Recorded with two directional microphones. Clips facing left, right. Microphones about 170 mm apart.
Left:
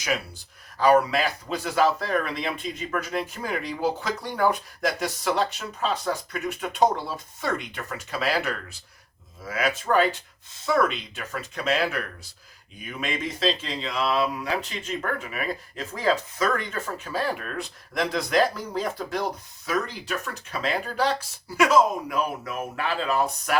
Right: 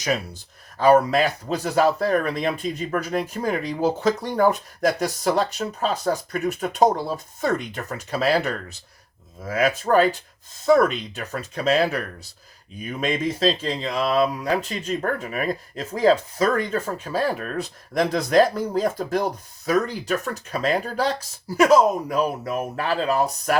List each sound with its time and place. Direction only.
0.8 s speech: 45° right (ahead or behind)